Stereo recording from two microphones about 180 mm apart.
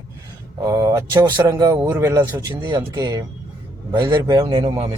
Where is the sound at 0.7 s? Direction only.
20° right (ahead or behind).